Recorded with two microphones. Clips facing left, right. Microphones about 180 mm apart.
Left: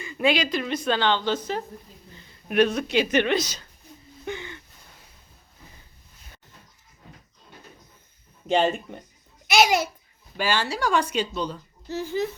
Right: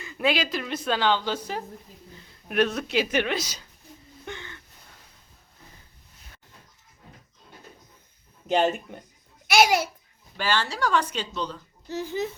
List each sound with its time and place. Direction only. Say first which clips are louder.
0.0 s speech: left 2 dB; centre (ahead or behind)
4.3 s a sound: left 6 dB; 15° left (ahead or behind)
8.4 s a child's voice: left 1 dB; 5° right (ahead or behind)
10.3 s speech: left 1 dB; 10° left (ahead or behind)
11.9 s speech: left 2 dB; 20° right (ahead or behind)